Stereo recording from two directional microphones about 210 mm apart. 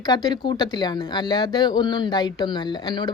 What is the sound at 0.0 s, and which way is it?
Speech, 20° left (ahead or behind).